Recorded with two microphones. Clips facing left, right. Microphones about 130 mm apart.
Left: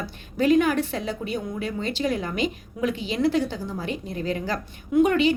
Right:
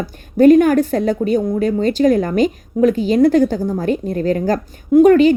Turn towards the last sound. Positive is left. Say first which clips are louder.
# right 10 dB
turn(degrees=-45)  # may be behind; listen again after turning